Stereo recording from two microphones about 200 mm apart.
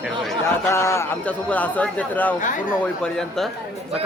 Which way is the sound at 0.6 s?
15° left (ahead or behind).